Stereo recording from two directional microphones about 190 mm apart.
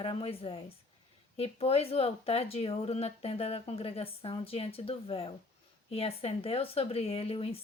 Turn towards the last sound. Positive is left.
turn(degrees=30)  # may be behind; listen again after turning